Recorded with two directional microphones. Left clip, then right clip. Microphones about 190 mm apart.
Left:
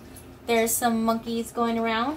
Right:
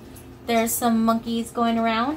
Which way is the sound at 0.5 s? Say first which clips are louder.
Right 1 dB; centre (ahead or behind).